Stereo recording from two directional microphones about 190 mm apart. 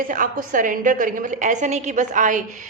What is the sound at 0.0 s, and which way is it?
A woman's voice, 45° right (ahead or behind).